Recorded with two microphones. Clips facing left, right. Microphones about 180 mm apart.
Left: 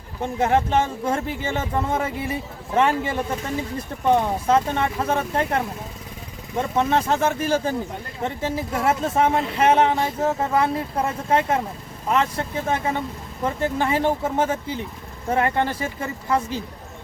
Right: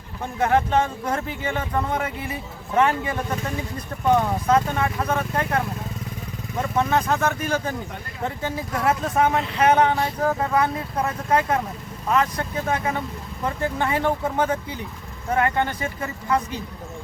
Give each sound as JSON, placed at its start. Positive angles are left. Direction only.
{"t": 0.3, "sound": "speech", "side_deg": 25}